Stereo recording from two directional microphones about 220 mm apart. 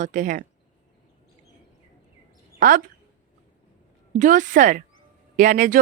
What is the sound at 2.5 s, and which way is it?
Speech, 40° right (ahead or behind).